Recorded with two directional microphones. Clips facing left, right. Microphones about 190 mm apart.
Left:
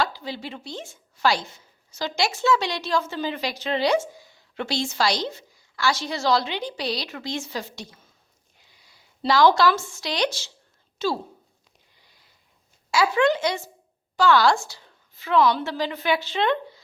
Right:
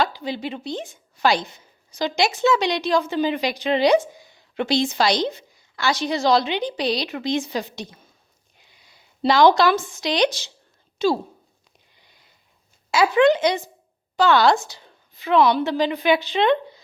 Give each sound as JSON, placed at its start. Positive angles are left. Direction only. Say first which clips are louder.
{"t": 0.0, "sound": "a woman's voice", "louder": "right 4 dB", "side_deg": -20}
{"t": 12.9, "sound": "a woman's voice", "louder": "right 4 dB", "side_deg": -20}